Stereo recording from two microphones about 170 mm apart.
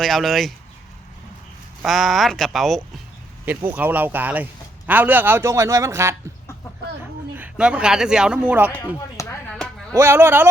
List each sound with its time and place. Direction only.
0.0 s speech: centre (ahead or behind)
1.8 s speech: centre (ahead or behind)
3.4 s speech: 10° right (ahead or behind)
7.3 s speech: 10° right (ahead or behind)
9.2 s a sound: 15° left (ahead or behind)
9.9 s speech: 15° right (ahead or behind)